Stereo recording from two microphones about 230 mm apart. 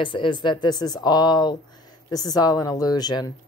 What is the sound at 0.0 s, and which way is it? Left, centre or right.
Speech, left.